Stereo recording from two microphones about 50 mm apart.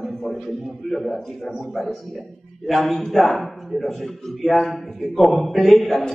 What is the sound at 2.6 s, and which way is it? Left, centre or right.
A man's voice, centre.